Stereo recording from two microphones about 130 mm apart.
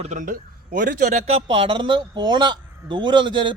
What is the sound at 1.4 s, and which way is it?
Speech, 40° right (ahead or behind).